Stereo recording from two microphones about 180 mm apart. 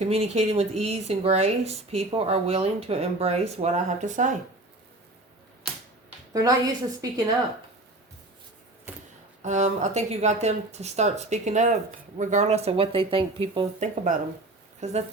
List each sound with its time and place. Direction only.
0.0 s speech: 35° right (ahead or behind)
6.3 s a woman's voice: 20° right (ahead or behind)
9.4 s speech: 40° right (ahead or behind)
13.8 s speech: 40° right (ahead or behind)